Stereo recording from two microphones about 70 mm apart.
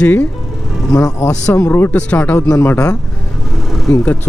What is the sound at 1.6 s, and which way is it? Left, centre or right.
Speech, left.